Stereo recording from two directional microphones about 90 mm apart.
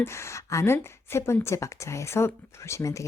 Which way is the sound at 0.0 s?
30° left (ahead or behind).